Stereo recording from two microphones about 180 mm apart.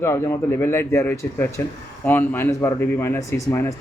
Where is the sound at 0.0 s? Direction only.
15° left (ahead or behind).